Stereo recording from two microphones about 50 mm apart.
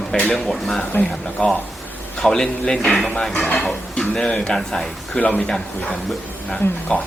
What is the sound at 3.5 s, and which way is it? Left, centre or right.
Speech, centre.